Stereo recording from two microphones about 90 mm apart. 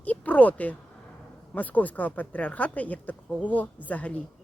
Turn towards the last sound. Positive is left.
turn(degrees=15)  # may be behind; listen again after turning